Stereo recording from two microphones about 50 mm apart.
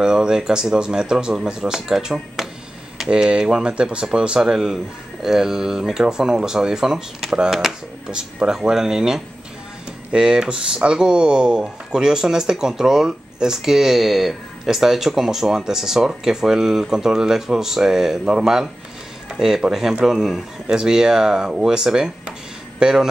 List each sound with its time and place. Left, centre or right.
0.0 s speech: centre
2.4 s a sound: centre
3.1 s speech: centre